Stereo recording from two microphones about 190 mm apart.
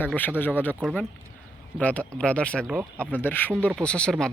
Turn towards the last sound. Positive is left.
turn(degrees=5)  # may be behind; listen again after turning